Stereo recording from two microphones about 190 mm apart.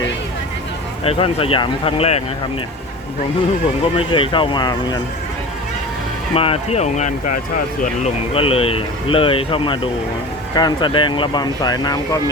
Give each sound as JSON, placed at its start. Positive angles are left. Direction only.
{"t": 1.0, "sound": "speech", "side_deg": 30}
{"t": 3.9, "sound": "speech", "side_deg": 25}
{"t": 6.3, "sound": "speech", "side_deg": 30}